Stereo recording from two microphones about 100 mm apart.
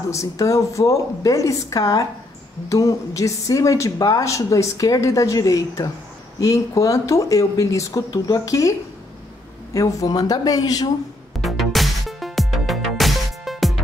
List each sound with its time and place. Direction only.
0.1 s speech: 30° left (ahead or behind)
9.8 s speech: 35° left (ahead or behind)
11.4 s music: centre (ahead or behind)